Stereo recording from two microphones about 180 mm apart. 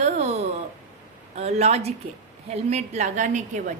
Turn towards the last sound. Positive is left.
turn(degrees=-45)  # may be behind; listen again after turning